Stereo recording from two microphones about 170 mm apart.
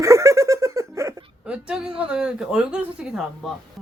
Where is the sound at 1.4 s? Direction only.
5° right (ahead or behind).